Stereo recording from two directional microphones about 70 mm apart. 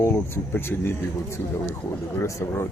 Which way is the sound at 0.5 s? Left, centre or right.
Left.